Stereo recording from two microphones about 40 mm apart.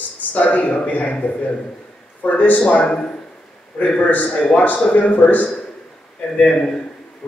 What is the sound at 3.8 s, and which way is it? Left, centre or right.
A man's voice, left.